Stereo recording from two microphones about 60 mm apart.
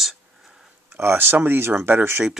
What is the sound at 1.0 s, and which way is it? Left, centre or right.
Speech, right.